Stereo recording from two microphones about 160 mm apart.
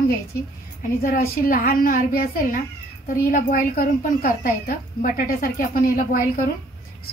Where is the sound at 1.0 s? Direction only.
60° left (ahead or behind).